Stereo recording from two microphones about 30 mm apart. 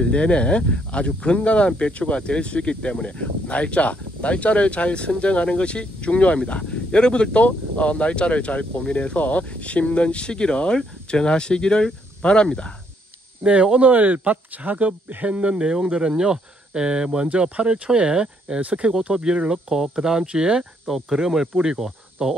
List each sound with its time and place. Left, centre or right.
0.0 s speech: left
7.4 s speech: left
7.9 s speech: left
13.7 s speech: right
15.2 s speech: right
15.6 s speech: right
17.8 s speech: right
18.8 s speech: right
19.1 s speech: right
20.2 s speech: right
20.8 s speech: centre